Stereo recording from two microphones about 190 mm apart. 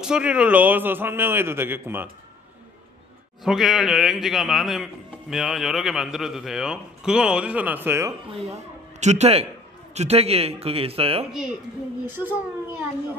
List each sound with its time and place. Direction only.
0.0 s a man's voice: 5° right (ahead or behind)
3.4 s a man's voice: centre (ahead or behind)
9.0 s a man's voice: 35° right (ahead or behind)
12.1 s a man's voice: 10° right (ahead or behind)